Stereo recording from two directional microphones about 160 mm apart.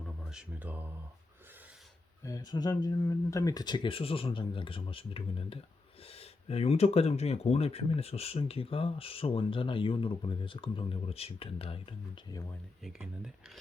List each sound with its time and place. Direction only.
0.0 s mantra: 5° right (ahead or behind)
2.2 s speech: 25° left (ahead or behind)
12.8 s speech: 5° right (ahead or behind)